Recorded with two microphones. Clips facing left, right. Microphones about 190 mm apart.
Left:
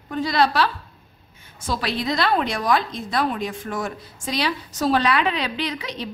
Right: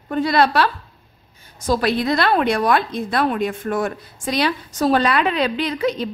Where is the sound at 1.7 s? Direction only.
50° right (ahead or behind).